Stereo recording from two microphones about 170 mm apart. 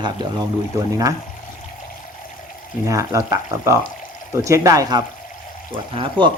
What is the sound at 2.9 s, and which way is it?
Speech, 20° right (ahead or behind).